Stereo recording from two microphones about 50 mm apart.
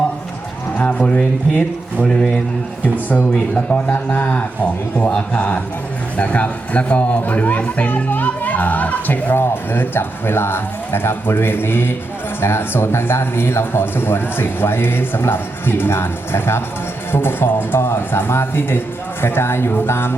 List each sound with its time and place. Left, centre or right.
0.8 s a sound: left
1.5 s speech: centre
3.5 s a man's voice: left
9.3 s a man's voice: left